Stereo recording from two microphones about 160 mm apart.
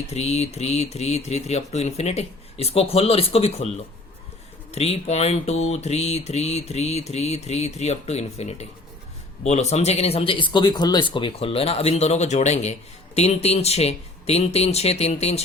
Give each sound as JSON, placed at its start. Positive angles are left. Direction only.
{"t": 0.1, "sound": "speech", "side_deg": 40}
{"t": 4.7, "sound": "speech", "side_deg": 40}